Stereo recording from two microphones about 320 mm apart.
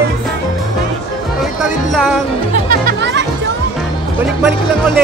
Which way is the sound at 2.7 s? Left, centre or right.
Right.